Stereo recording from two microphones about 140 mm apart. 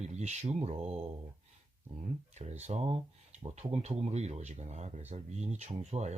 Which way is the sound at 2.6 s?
50° right (ahead or behind).